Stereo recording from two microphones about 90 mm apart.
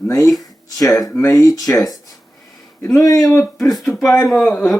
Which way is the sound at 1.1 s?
30° left (ahead or behind).